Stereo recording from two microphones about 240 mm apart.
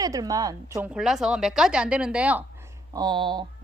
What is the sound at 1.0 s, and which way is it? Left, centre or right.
A woman's voice, centre.